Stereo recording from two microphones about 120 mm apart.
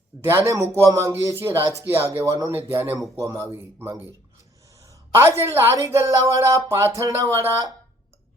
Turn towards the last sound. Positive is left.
turn(degrees=-30)  # may be behind; listen again after turning